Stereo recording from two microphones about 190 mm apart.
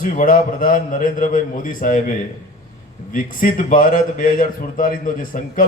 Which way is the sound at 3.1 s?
45° left (ahead or behind).